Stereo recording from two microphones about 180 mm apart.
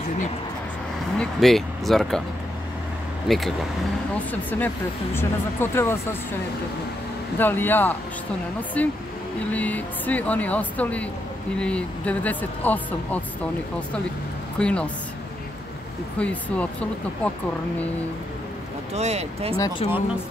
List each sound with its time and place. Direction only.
1.1 s speech: centre (ahead or behind)
3.3 s speech: centre (ahead or behind)
7.3 s speech: 10° left (ahead or behind)
14.6 s speech: 5° left (ahead or behind)
16.2 s speech: 5° left (ahead or behind)
18.9 s speech: 35° right (ahead or behind)
19.8 s speech: 35° left (ahead or behind)